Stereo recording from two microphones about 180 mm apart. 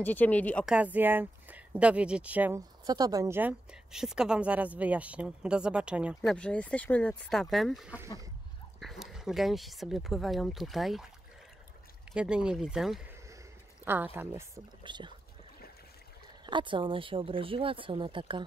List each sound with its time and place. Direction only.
0.0 s speech: 10° left (ahead or behind)
0.7 s a woman's voice: 10° right (ahead or behind)
2.9 s a woman's voice: 20° right (ahead or behind); by 6.3 s 5° right (ahead or behind)
6.3 s speech: 5° left (ahead or behind)
12.1 s a woman's voice: 5° right (ahead or behind)
14.8 s speech: 25° right (ahead or behind)
16.4 s speech: 25° right (ahead or behind)